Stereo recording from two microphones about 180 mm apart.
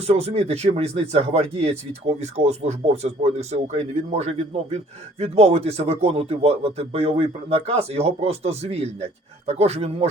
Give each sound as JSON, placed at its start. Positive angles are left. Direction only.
{"t": 0.1, "sound": "speech", "side_deg": -35}